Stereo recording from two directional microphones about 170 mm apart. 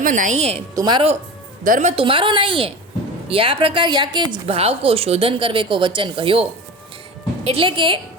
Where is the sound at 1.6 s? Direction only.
50° right (ahead or behind).